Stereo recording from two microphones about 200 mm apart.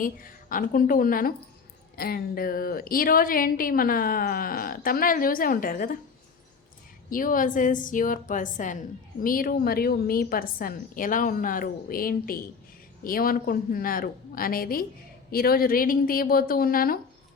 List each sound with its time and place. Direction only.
0.0 s a woman's voice: 45° left (ahead or behind)
7.1 s a woman's voice: 45° left (ahead or behind)